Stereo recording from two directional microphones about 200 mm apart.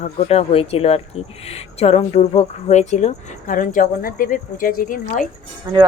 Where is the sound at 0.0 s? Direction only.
30° left (ahead or behind).